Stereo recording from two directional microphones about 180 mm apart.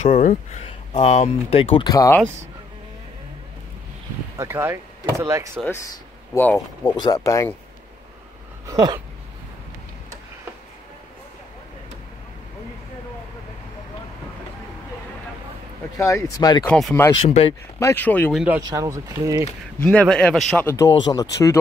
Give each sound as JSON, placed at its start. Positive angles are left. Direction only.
{"t": 0.0, "sound": "speech", "side_deg": 45}
{"t": 4.4, "sound": "speech", "side_deg": -15}
{"t": 6.3, "sound": "speech", "side_deg": 10}
{"t": 6.9, "sound": "speech", "side_deg": 20}
{"t": 8.6, "sound": "speech", "side_deg": -20}
{"t": 16.0, "sound": "speech", "side_deg": 15}
{"t": 16.6, "sound": "speech", "side_deg": 5}
{"t": 17.2, "sound": "speech", "side_deg": 35}
{"t": 17.7, "sound": "speech", "side_deg": 15}
{"t": 18.3, "sound": "speech", "side_deg": -5}
{"t": 18.6, "sound": "speech", "side_deg": -15}
{"t": 19.8, "sound": "speech", "side_deg": 5}
{"t": 20.6, "sound": "speech", "side_deg": 20}